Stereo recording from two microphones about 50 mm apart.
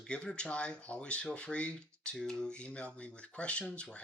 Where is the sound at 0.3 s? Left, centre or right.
Left.